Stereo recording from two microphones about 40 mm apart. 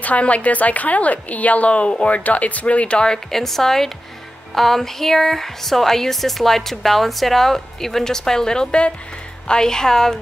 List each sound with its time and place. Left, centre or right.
0.0 s a woman's voice: left
3.1 s speech: centre